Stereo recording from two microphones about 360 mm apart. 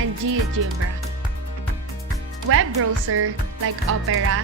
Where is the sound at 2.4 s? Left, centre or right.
Right.